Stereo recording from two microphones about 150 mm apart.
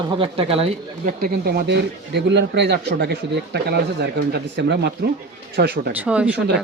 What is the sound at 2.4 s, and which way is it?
Speech, 90° right.